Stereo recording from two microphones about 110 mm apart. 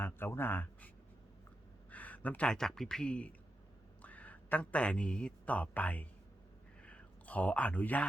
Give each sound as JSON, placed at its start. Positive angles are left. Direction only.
{"t": 0.0, "sound": "speech", "side_deg": 20}
{"t": 1.9, "sound": "speech", "side_deg": 15}